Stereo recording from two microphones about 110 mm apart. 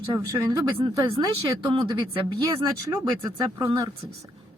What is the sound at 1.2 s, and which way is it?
Speech, 40° right (ahead or behind).